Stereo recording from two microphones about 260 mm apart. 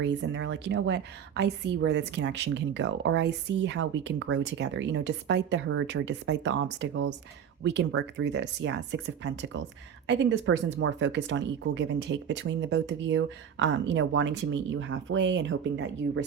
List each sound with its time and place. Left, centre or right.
0.0 s a woman's voice: right